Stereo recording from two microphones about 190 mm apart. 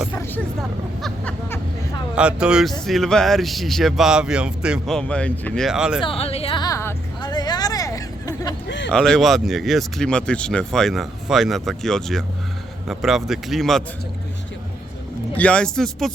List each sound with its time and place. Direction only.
0.1 s speech: 10° left (ahead or behind)
1.0 s vehicle: 5° left (ahead or behind)
2.1 s speech: 5° right (ahead or behind)
6.0 s a sound: 30° left (ahead or behind)
8.6 s a sound: 70° left (ahead or behind)
8.9 s speech: 5° left (ahead or behind)
15.4 s speech: 5° left (ahead or behind)